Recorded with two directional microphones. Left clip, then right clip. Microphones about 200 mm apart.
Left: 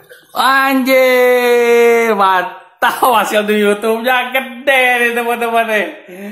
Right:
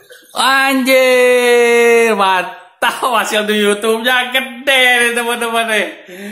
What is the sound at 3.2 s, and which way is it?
Speech, 20° left (ahead or behind).